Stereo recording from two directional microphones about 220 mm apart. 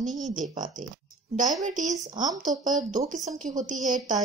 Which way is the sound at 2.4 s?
35° right (ahead or behind).